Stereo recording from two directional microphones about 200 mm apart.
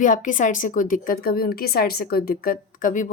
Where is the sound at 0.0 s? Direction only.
40° left (ahead or behind).